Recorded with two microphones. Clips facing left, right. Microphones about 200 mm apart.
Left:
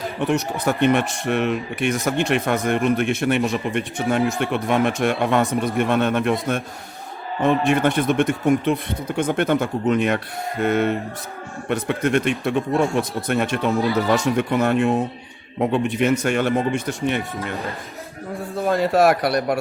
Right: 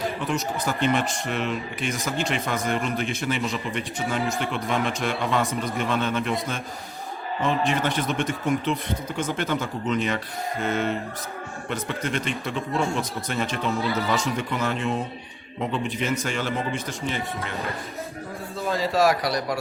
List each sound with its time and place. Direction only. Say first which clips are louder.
0.2 s speech: left 5 dB; 65° left (ahead or behind)
7.7 s speech: left 7 dB; 50° left (ahead or behind)
18.5 s speech: left 6 dB; 55° left (ahead or behind)